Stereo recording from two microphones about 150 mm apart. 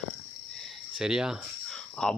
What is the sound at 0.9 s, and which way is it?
Speech, 5° right (ahead or behind).